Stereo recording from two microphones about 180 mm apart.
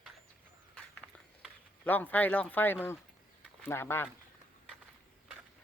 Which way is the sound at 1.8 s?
10° left (ahead or behind).